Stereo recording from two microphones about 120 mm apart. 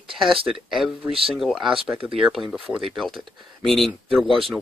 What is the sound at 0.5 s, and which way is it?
Speech, 5° right (ahead or behind).